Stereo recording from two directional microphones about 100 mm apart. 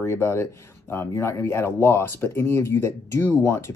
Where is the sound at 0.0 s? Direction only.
25° left (ahead or behind).